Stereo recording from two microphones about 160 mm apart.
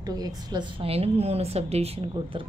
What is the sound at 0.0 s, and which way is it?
A woman's voice, 25° right (ahead or behind).